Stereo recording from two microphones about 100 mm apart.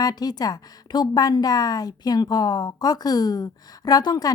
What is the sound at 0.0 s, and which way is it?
Speech, 40° left (ahead or behind).